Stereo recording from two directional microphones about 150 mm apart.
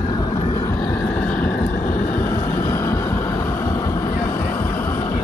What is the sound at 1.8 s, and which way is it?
Vehicle, 70° left (ahead or behind).